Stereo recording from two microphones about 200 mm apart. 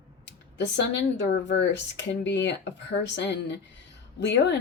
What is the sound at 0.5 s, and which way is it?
Speech, 60° left (ahead or behind).